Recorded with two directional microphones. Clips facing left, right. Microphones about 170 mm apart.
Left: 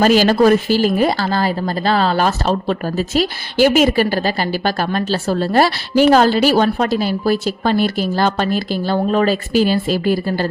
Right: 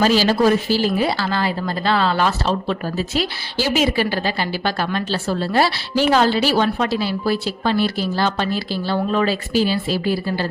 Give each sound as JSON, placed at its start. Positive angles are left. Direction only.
{"t": 0.0, "sound": "a woman's voice", "side_deg": 50}